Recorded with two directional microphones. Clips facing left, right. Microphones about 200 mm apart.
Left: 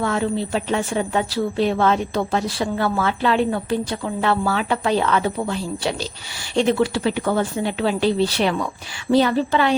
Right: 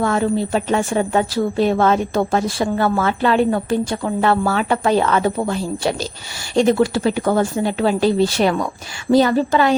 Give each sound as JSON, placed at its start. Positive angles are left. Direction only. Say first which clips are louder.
{"t": 0.0, "sound": "a woman's voice", "louder": "right 4 dB", "side_deg": -45}